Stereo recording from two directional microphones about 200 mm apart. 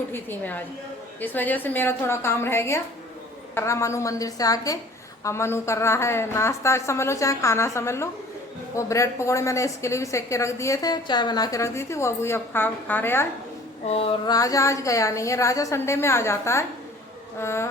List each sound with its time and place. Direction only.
0.1 s a woman's voice: 10° left (ahead or behind)
13.8 s a sound: 30° left (ahead or behind)
14.3 s a woman's voice: 15° left (ahead or behind)